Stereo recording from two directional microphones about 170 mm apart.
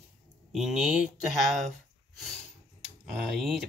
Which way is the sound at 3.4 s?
Centre (ahead or behind).